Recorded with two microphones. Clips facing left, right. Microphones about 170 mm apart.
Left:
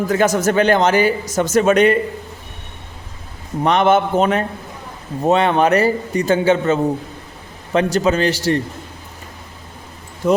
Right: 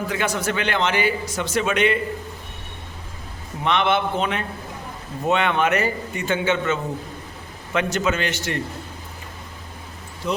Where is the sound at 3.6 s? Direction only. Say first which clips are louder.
Left 6 dB; 40° left (ahead or behind).